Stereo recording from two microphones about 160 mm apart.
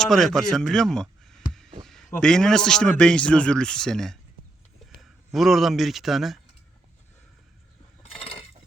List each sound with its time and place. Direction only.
0.0 s speech: centre (ahead or behind)
1.8 s a sound: centre (ahead or behind)
2.2 s speech: 5° left (ahead or behind)
8.1 s mechanisms: 35° left (ahead or behind)